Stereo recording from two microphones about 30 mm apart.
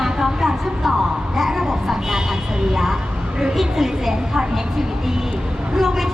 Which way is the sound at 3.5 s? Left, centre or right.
Centre.